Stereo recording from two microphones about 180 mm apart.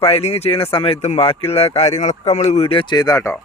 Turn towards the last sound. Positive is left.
turn(degrees=15)  # may be behind; listen again after turning